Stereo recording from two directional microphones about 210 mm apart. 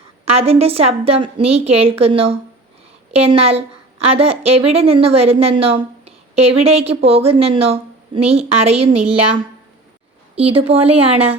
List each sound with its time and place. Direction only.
0.3 s speech: 30° right (ahead or behind)